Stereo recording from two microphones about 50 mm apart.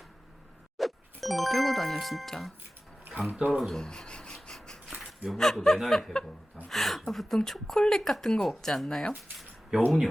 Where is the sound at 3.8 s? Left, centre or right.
Centre.